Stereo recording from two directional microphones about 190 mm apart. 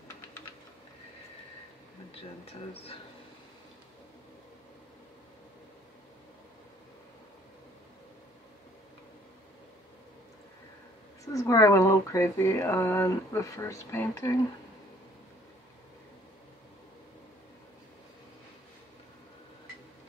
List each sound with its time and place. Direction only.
2.7 s speech: 30° left (ahead or behind)
11.3 s speech: 15° left (ahead or behind)